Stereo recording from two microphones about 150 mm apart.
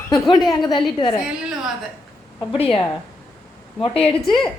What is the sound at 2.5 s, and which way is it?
Speech, 35° left (ahead or behind).